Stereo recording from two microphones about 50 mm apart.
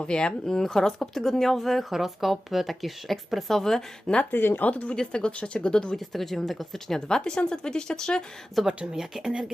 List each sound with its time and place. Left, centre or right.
0.0 s speech: centre
4.3 s speech: left
4.6 s speech: left
6.1 s speech: centre
8.6 s speech: centre